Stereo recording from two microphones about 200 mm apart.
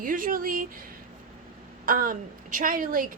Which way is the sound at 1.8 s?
45° right (ahead or behind).